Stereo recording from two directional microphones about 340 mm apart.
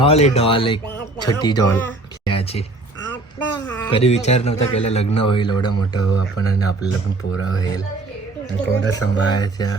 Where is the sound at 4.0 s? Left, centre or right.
Centre.